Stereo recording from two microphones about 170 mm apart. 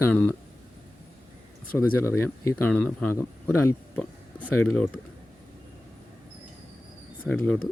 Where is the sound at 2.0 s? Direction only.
15° left (ahead or behind).